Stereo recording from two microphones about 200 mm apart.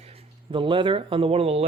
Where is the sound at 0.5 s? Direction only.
25° right (ahead or behind).